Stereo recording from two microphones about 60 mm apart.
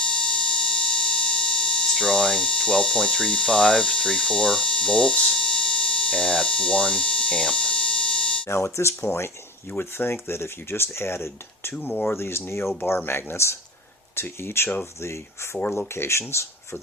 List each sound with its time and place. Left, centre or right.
0.0 s a sound: centre
8.4 s speech: left
9.6 s speech: left
11.7 s speech: left
12.1 s speech: left